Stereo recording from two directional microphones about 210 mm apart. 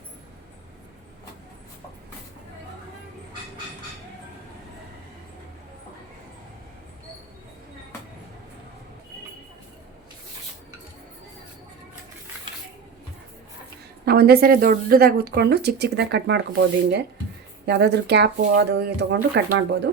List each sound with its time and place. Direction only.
14.0 s speech: 50° right (ahead or behind)